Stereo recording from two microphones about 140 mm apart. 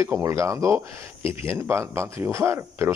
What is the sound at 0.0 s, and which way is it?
Speech, 20° right (ahead or behind).